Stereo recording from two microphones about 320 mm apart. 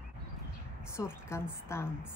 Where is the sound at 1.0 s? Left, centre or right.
Centre.